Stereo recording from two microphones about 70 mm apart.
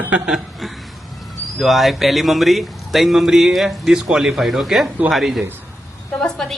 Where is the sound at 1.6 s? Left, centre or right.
Centre.